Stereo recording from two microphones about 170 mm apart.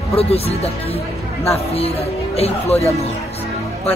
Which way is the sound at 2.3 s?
35° left (ahead or behind).